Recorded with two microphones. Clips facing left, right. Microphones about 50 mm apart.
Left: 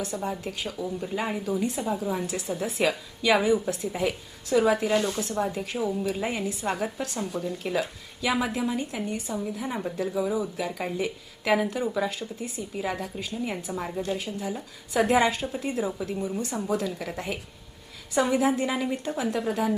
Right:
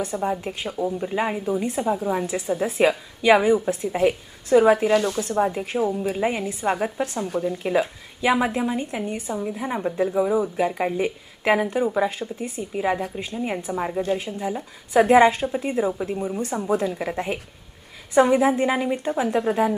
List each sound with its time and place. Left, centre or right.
0.0 s a woman's voice: right
11.6 s a woman's voice: centre